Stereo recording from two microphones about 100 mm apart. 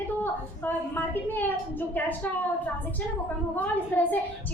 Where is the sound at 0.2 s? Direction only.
20° left (ahead or behind).